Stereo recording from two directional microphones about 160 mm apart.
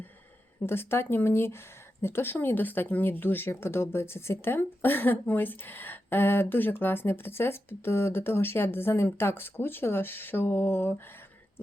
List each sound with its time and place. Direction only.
0.6 s speech: 15° left (ahead or behind)